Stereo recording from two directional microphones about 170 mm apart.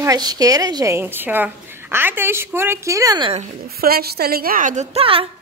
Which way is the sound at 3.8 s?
65° right (ahead or behind).